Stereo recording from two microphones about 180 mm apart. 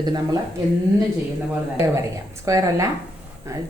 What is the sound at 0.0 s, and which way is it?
Speech, 20° right (ahead or behind).